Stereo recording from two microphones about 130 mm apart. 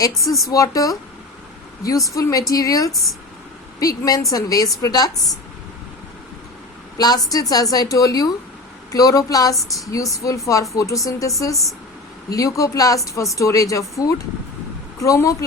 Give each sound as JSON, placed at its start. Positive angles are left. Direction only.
{"t": 0.3, "sound": "speech", "side_deg": 0}
{"t": 0.5, "sound": "a woman's voice", "side_deg": 25}
{"t": 2.1, "sound": "a woman's voice", "side_deg": 25}
{"t": 2.9, "sound": "speech", "side_deg": 0}
{"t": 3.8, "sound": "a woman's voice", "side_deg": 25}
{"t": 6.9, "sound": "a woman's voice", "side_deg": 30}